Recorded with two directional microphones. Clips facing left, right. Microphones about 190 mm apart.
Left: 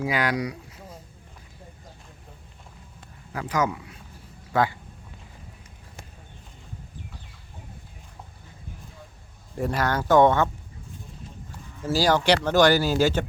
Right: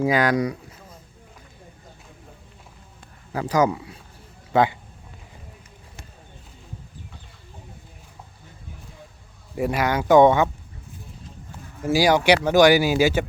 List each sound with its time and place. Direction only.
0.0 s speech: 45° right (ahead or behind)
3.3 s speech: 35° right (ahead or behind)
4.5 s speech: 20° right (ahead or behind)
9.6 s speech: 10° right (ahead or behind)
11.9 s speech: 10° right (ahead or behind)